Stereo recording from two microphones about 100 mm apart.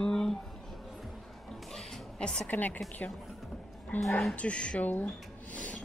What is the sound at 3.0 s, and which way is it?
Speech, 20° left (ahead or behind).